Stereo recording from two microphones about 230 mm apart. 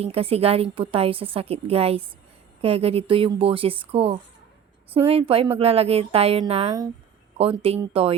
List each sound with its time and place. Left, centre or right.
0.0 s a woman's voice: right